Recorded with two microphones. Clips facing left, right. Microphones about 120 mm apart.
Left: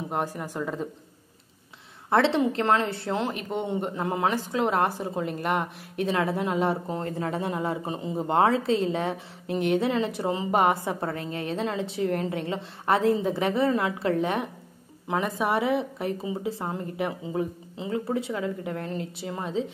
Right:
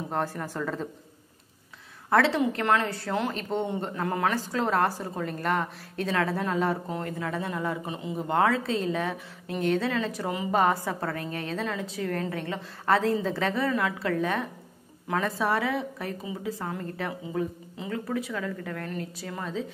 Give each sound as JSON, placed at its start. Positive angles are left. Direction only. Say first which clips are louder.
{"t": 0.1, "sound": "a woman's voice", "louder": "even", "side_deg": 15}
{"t": 2.0, "sound": "speech", "louder": "left 1 dB", "side_deg": 25}
{"t": 3.3, "sound": "speech", "louder": "even", "side_deg": 15}